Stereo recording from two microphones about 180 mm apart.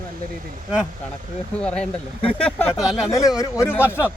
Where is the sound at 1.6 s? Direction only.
5° left (ahead or behind).